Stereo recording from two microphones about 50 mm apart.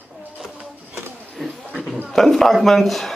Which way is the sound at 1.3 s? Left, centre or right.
Centre.